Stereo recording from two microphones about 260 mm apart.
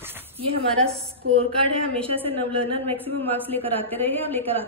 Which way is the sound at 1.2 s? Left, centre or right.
Right.